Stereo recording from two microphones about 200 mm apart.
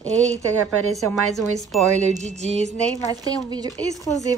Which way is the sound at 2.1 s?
35° right (ahead or behind).